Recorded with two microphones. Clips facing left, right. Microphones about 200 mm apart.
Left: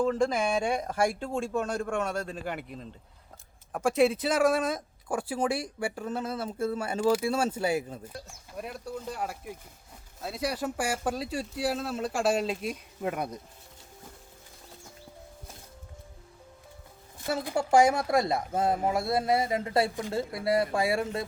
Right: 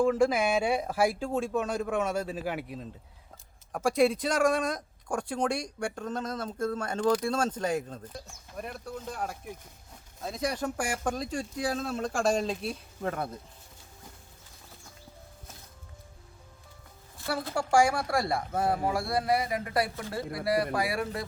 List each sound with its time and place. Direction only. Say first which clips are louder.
0.0 s speech: right 2 dB; 10° right (ahead or behind); by 13.4 s 15° left (ahead or behind)
17.2 s speech: left 2 dB; 20° left (ahead or behind)